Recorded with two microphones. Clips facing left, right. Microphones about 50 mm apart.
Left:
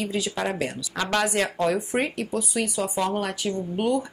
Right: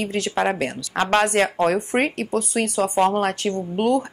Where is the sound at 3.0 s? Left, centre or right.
Right.